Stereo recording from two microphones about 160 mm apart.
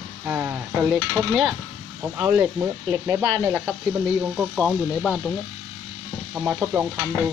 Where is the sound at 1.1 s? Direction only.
Centre (ahead or behind).